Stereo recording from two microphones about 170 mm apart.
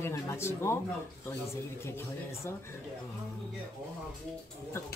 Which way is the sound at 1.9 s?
15° left (ahead or behind).